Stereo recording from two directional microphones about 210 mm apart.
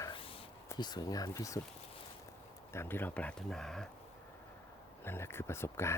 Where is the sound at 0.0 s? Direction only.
25° left (ahead or behind).